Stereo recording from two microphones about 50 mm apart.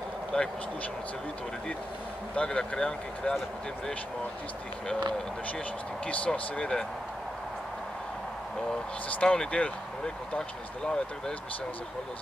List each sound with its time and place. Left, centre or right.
0.3 s speech: centre
2.3 s speech: left
6.0 s speech: left
9.2 s speech: left